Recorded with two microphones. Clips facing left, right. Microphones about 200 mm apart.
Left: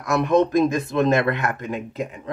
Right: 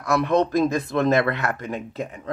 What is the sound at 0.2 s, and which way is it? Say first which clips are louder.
Speech: left 4 dB; 15° left (ahead or behind).